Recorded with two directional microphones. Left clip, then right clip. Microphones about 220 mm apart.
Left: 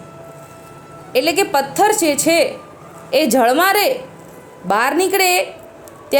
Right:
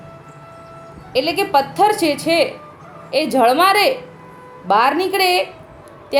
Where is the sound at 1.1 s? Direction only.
20° left (ahead or behind).